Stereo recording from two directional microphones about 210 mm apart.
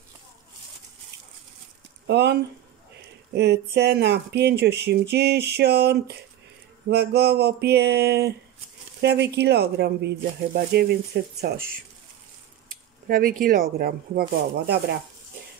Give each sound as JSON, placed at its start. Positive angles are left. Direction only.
{"t": 2.0, "sound": "speech", "side_deg": -55}
{"t": 3.3, "sound": "speech", "side_deg": -50}
{"t": 13.1, "sound": "speech", "side_deg": -40}